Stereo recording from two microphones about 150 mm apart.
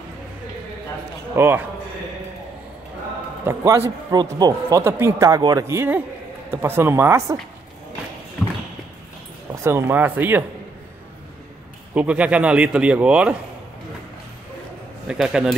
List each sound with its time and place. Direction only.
1.3 s a man's voice: 15° right (ahead or behind)
3.4 s a man's voice: 20° right (ahead or behind)
9.6 s a man's voice: 15° right (ahead or behind)
11.9 s a man's voice: 10° right (ahead or behind)
15.0 s a man's voice: 5° right (ahead or behind)